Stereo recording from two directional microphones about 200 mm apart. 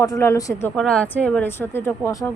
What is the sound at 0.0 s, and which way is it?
Speech, 15° left (ahead or behind).